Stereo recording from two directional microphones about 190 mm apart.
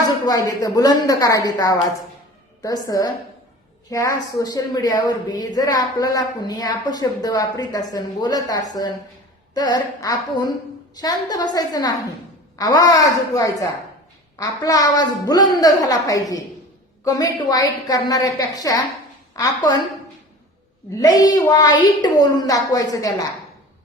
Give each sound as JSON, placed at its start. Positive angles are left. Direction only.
{"t": 0.3, "sound": "a woman's voice", "side_deg": 20}
{"t": 20.9, "sound": "a woman's voice", "side_deg": 20}